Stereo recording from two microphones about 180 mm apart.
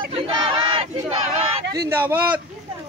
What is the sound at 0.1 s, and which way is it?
Battle cry, 30° right (ahead or behind).